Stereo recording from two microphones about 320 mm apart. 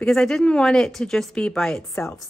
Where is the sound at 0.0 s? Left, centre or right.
Centre.